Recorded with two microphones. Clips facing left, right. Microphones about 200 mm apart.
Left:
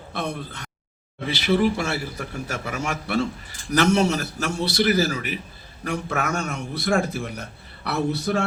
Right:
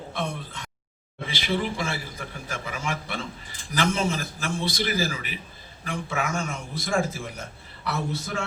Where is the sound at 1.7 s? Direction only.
70° left (ahead or behind).